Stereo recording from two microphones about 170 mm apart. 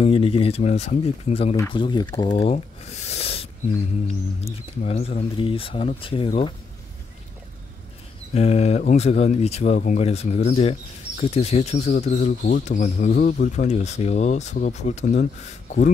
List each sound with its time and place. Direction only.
0.0 s speech: 35° left (ahead or behind)
8.4 s speech: 40° left (ahead or behind)